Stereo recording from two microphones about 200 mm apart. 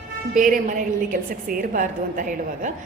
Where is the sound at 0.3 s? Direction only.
40° right (ahead or behind).